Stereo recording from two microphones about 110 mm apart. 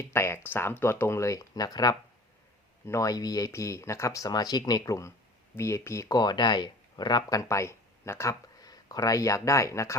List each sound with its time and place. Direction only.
0.0 s speech: 25° left (ahead or behind)